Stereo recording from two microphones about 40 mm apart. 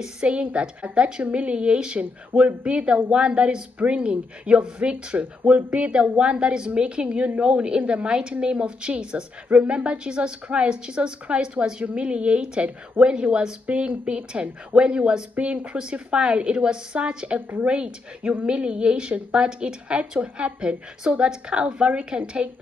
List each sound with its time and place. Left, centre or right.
0.0 s a woman's voice: right
1.4 s a woman's voice: right
4.9 s speech: right
5.7 s a woman's voice: right
13.7 s a woman's voice: right
15.3 s a woman's voice: right